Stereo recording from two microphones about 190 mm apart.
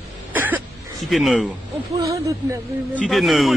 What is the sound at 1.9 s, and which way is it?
Speech, 20° right (ahead or behind).